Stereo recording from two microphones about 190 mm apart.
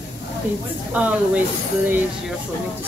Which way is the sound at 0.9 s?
5° right (ahead or behind).